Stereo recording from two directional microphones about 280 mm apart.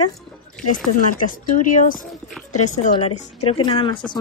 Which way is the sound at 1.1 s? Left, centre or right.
Left.